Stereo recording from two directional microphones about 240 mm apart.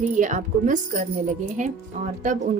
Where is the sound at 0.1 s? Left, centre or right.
Right.